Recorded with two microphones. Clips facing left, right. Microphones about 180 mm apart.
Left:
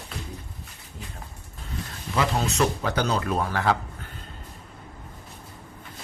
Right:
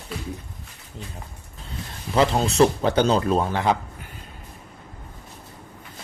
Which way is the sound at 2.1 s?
30° right (ahead or behind).